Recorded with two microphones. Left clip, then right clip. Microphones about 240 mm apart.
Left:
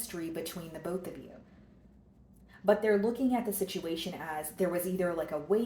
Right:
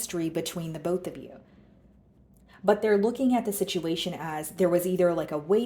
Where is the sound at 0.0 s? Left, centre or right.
Right.